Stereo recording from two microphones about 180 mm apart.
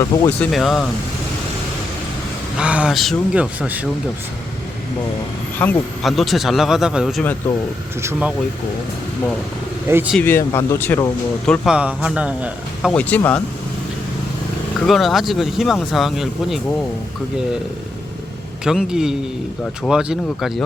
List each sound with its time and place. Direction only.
0.3 s speech: 5° left (ahead or behind)
2.6 s speech: 5° right (ahead or behind)
5.5 s speech: 5° left (ahead or behind)
9.9 s a man's voice: 10° right (ahead or behind)
10.2 s speech: 10° left (ahead or behind)
11.6 s a man's voice: 5° right (ahead or behind)
12.9 s speech: 10° left (ahead or behind)
14.8 s speech: centre (ahead or behind)
18.6 s speech: 5° right (ahead or behind)